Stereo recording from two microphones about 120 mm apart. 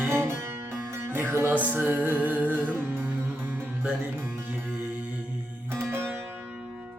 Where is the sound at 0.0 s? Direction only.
20° right (ahead or behind).